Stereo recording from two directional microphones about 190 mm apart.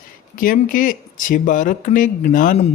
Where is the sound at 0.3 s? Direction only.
45° left (ahead or behind).